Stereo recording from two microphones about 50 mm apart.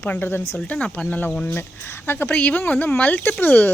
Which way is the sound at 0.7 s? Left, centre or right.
Left.